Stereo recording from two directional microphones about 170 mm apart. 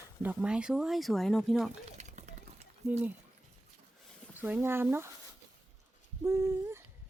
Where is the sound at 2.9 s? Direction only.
10° right (ahead or behind).